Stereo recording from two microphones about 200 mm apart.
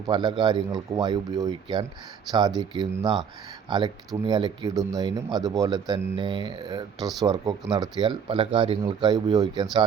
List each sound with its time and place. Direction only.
0.1 s speech: 20° right (ahead or behind)